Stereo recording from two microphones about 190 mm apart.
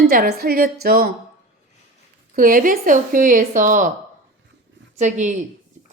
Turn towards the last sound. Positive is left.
turn(degrees=-40)  # may be behind; listen again after turning